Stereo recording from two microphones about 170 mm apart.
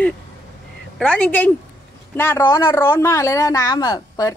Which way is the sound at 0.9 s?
5° left (ahead or behind).